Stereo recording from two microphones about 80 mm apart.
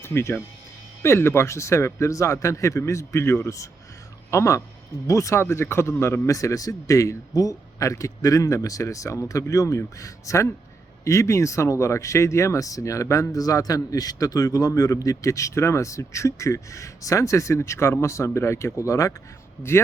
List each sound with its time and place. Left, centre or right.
0.0 s speech: left